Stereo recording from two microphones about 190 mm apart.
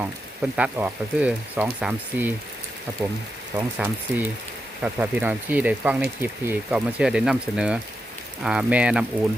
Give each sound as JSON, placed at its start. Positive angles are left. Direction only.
{"t": 0.5, "sound": "speech", "side_deg": -5}
{"t": 3.5, "sound": "speech", "side_deg": -10}